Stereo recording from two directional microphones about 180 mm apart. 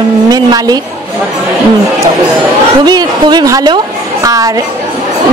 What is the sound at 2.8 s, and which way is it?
Speech, 25° right (ahead or behind).